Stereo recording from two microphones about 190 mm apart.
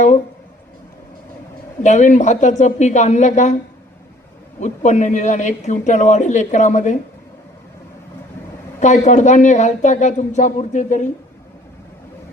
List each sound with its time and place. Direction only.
1.8 s a man's voice: 40° left (ahead or behind)
4.6 s a man's voice: 40° left (ahead or behind)
8.8 s a man's voice: 40° left (ahead or behind)